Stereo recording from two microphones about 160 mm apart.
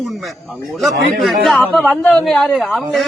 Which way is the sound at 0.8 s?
Centre (ahead or behind).